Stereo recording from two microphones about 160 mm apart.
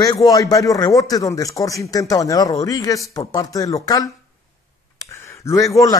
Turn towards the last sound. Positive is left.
turn(degrees=20)  # may be behind; listen again after turning